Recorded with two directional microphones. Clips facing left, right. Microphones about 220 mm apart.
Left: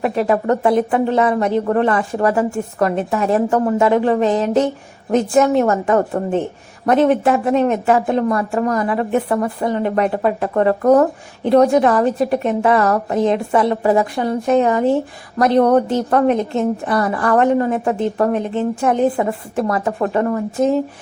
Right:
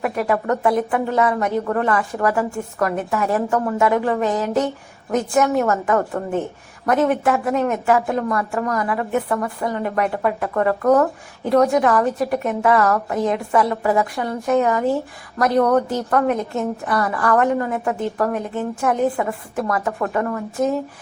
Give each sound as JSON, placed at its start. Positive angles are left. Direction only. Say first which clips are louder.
{"t": 0.0, "sound": "a woman's voice", "louder": "left 4 dB", "side_deg": 25}